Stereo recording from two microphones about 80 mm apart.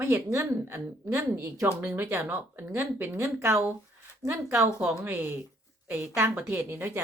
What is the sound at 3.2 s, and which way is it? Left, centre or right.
Speech, right.